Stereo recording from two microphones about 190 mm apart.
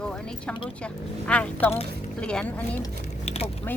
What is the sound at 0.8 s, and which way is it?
Speech, 5° left (ahead or behind).